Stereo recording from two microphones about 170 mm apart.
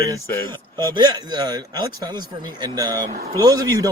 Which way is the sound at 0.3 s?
10° left (ahead or behind).